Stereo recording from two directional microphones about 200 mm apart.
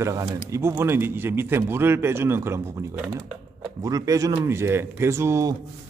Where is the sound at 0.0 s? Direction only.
15° right (ahead or behind).